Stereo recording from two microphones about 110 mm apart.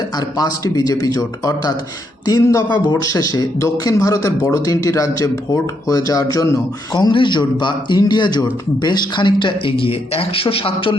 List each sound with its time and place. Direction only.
0.3 s speech: 35° left (ahead or behind)
6.9 s a man's voice: 45° left (ahead or behind)